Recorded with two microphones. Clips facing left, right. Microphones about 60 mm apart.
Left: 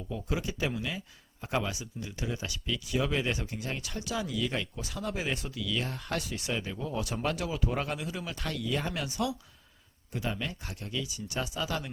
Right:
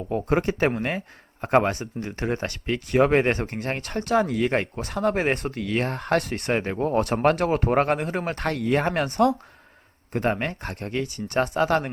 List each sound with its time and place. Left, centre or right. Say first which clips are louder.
0.1 s speech: right 11 dB; right